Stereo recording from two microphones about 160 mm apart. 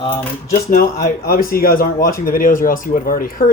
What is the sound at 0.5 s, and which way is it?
Speech, 60° left (ahead or behind).